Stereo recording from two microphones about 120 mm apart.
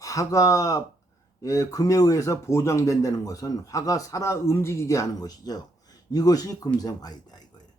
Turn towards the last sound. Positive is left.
turn(degrees=35)  # may be behind; listen again after turning